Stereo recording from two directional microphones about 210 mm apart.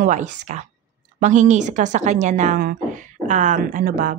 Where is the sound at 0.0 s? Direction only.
35° right (ahead or behind).